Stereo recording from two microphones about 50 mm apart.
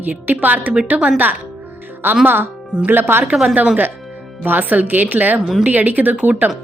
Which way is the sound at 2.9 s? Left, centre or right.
Right.